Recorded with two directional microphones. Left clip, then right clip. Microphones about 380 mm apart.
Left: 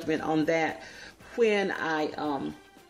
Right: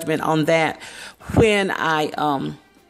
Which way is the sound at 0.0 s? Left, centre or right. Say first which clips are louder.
Right 7 dB; right.